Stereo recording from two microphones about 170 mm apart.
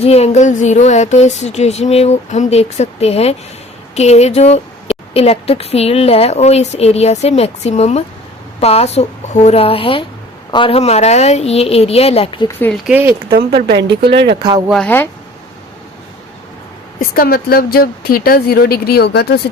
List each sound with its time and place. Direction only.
0.0 s speech: 35° left (ahead or behind)
12.5 s speech: 10° left (ahead or behind)
12.7 s speech: 5° right (ahead or behind)
14.1 s speech: 90° right
14.7 s speech: 5° left (ahead or behind)
17.0 s speech: 60° left (ahead or behind)